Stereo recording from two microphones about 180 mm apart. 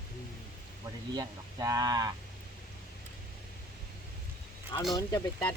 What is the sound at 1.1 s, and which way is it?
Speech, 20° right (ahead or behind).